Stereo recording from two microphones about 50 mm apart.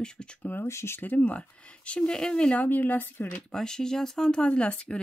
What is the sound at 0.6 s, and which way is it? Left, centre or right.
Speech, left.